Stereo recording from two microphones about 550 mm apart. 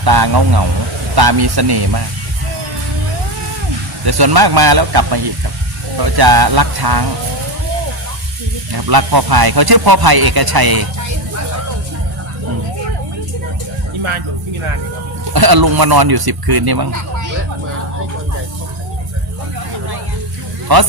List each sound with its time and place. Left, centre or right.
0.0 s speech: right
4.0 s speech: right
8.7 s speech: right
15.3 s speech: right
20.7 s speech: right